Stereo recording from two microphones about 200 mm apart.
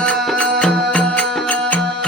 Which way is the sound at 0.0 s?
5° left (ahead or behind).